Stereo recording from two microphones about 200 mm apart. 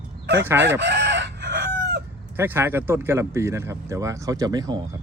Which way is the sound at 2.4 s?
10° right (ahead or behind).